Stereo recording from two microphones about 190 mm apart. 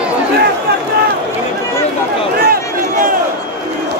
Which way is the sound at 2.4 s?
50° right (ahead or behind).